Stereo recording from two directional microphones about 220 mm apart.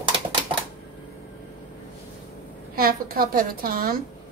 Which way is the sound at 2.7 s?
40° right (ahead or behind).